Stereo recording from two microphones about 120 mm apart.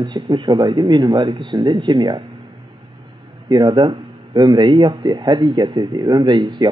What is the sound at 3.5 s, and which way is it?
Speech, 35° right (ahead or behind).